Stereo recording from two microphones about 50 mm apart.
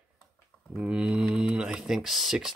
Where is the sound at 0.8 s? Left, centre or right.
Right.